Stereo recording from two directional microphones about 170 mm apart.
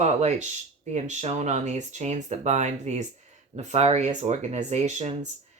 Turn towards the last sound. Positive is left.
turn(degrees=-45)  # may be behind; listen again after turning